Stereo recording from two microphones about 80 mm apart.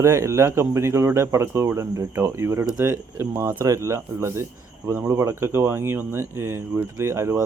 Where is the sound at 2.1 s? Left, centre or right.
Right.